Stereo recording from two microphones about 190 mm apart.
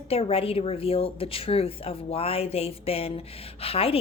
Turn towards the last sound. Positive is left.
turn(degrees=30)  # may be behind; listen again after turning